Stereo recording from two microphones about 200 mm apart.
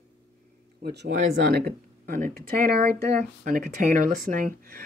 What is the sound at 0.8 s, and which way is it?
Speech, 55° right (ahead or behind).